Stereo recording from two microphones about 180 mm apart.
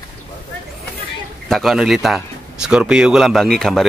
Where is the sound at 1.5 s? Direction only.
Centre (ahead or behind).